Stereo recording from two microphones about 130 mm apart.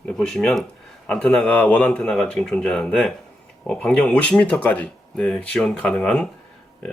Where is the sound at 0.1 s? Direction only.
5° left (ahead or behind).